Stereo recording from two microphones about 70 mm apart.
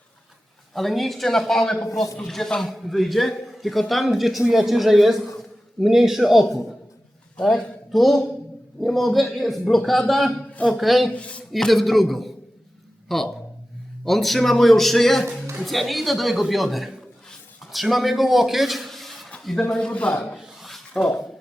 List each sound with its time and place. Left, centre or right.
0.7 s a man's voice: centre
11.1 s speech: centre
11.5 s a man's voice: centre
13.1 s a sound: centre
14.0 s a man's voice: centre
19.7 s speech: centre
20.3 s a sound: centre
20.9 s speech: centre